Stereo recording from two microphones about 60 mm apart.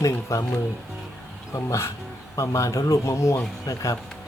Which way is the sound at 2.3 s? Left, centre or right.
Left.